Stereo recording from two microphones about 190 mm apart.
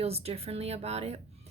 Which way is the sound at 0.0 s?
30° right (ahead or behind).